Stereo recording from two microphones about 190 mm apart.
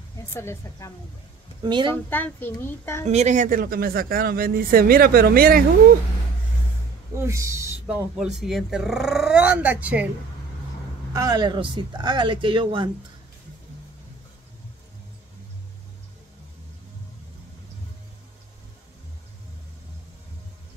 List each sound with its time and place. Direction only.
0.3 s a child's voice: 15° left (ahead or behind)
1.6 s speech: 25° right (ahead or behind)
2.0 s a child's voice: 10° left (ahead or behind)
3.1 s speech: 35° right (ahead or behind)
7.2 s speech: 15° right (ahead or behind)
8.2 s speech: 5° right (ahead or behind)
11.1 s speech: 20° right (ahead or behind)